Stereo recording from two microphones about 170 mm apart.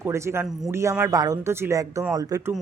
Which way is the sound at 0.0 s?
15° right (ahead or behind).